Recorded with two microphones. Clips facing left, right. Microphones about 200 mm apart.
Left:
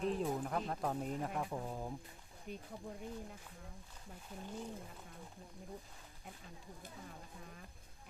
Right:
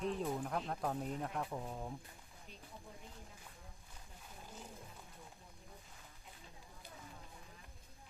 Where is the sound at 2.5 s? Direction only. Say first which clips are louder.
Left 13 dB; 55° left (ahead or behind).